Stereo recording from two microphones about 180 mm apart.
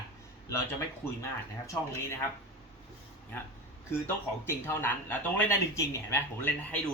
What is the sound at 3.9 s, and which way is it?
Speech, 10° left (ahead or behind).